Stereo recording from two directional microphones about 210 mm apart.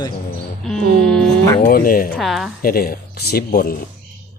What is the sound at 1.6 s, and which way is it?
Speech, 45° left (ahead or behind).